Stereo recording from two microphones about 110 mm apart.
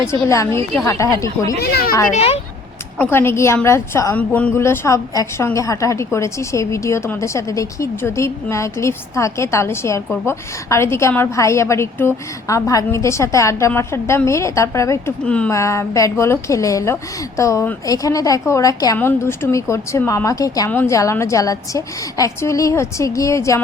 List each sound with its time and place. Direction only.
0.3 s a woman's voice: 30° left (ahead or behind)
2.1 s speech: 70° left (ahead or behind)
3.0 s a woman's voice: 20° left (ahead or behind)
4.2 s a woman's voice: 15° left (ahead or behind); by 15.1 s 30° left (ahead or behind)
15.2 s speech: 10° left (ahead or behind)
15.4 s a woman's voice: 25° left (ahead or behind)
18.9 s a woman's voice: 20° left (ahead or behind)
20.7 s speech: 20° left (ahead or behind)
20.9 s a woman's voice: 30° left (ahead or behind)